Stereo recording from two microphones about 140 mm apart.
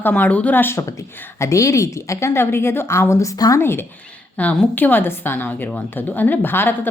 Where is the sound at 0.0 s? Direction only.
10° left (ahead or behind).